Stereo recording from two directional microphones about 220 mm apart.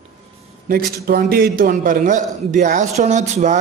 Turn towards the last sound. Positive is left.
turn(degrees=-35)  # may be behind; listen again after turning